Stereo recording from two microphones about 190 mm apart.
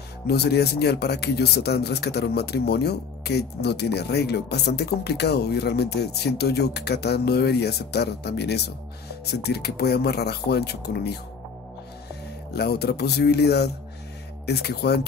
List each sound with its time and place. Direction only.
0.3 s speech: 60° left (ahead or behind)
12.5 s speech: 60° left (ahead or behind)